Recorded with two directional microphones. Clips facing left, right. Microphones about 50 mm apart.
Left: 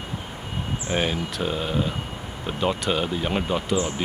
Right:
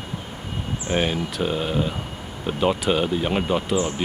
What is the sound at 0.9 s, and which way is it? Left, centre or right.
Speech, centre.